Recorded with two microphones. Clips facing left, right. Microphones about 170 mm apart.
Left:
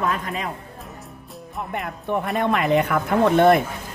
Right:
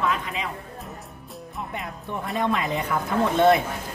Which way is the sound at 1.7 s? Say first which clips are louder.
Left 9 dB; 60° left (ahead or behind).